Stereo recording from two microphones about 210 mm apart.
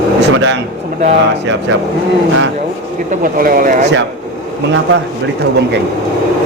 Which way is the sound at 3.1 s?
45° right (ahead or behind).